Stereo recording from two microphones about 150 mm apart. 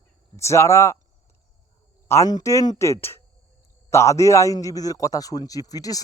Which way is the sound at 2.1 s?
25° left (ahead or behind).